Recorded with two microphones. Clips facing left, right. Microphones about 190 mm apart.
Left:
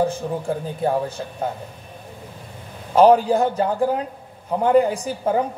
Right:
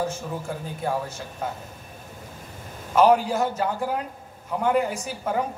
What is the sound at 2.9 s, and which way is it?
A man's voice, 35° left (ahead or behind).